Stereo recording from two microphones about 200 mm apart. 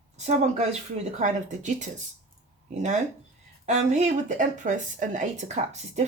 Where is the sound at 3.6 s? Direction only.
35° right (ahead or behind).